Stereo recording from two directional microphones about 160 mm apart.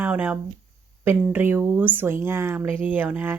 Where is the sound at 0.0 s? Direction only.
10° right (ahead or behind).